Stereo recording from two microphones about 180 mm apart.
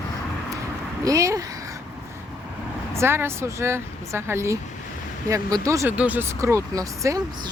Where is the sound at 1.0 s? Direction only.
20° right (ahead or behind).